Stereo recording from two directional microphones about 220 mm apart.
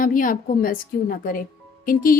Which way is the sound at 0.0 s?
40° left (ahead or behind).